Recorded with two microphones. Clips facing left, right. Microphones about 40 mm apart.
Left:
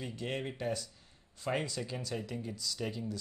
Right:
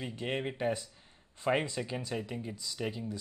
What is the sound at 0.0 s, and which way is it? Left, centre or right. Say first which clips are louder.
Speech: right 3 dB; right.